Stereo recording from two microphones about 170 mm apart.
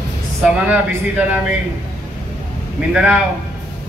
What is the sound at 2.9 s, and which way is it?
Speech, 5° right (ahead or behind).